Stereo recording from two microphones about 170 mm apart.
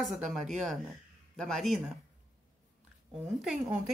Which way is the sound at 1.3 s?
Centre (ahead or behind).